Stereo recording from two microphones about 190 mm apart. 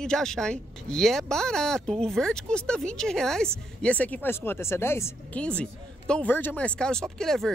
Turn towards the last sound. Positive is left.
turn(degrees=0)  # may be behind; listen again after turning